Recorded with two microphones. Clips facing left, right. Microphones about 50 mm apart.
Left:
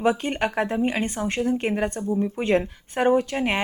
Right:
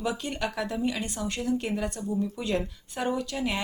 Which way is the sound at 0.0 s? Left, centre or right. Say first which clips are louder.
Left 8 dB; left.